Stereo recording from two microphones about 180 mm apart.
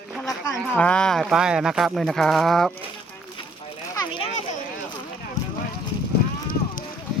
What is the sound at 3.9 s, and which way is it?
Children playing, 25° left (ahead or behind).